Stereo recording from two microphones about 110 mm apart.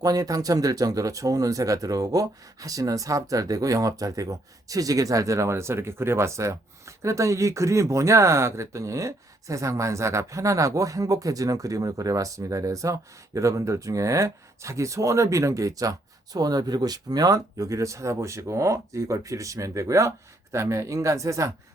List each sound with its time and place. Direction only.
0.0 s speech: 35° right (ahead or behind)